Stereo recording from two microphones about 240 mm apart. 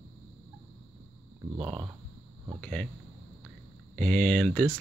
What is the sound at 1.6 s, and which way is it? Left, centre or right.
Speech, right.